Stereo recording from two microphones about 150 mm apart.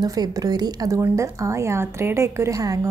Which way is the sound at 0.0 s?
25° right (ahead or behind).